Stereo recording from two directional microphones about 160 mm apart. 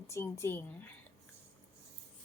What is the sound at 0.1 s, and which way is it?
Speech, 15° left (ahead or behind).